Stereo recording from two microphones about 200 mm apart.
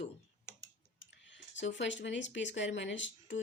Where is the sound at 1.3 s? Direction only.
65° left (ahead or behind).